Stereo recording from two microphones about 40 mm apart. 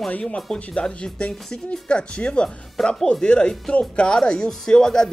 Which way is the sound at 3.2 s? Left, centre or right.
Left.